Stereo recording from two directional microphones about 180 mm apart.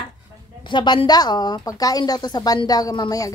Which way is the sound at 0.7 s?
25° left (ahead or behind).